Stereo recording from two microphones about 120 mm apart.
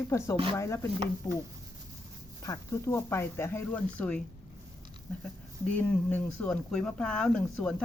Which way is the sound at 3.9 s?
10° left (ahead or behind).